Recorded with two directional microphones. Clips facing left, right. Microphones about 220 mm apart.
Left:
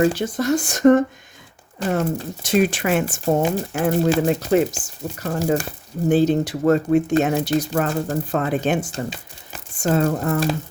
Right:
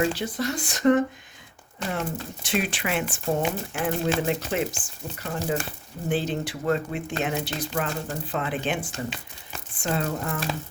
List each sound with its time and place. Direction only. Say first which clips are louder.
0.0 s speech: left 6 dB; 45° left (ahead or behind)